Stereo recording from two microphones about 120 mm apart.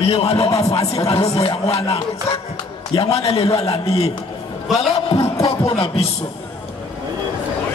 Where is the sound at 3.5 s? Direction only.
30° left (ahead or behind).